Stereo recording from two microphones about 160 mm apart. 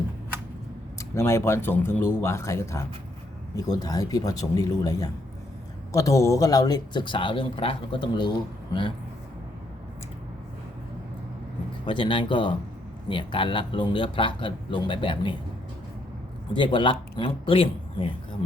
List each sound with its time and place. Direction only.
1.1 s speech: 15° left (ahead or behind)
11.9 s speech: 30° left (ahead or behind)
16.5 s speech: 30° left (ahead or behind)